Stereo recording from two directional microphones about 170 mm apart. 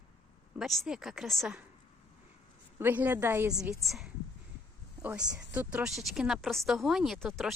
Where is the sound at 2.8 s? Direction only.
10° right (ahead or behind).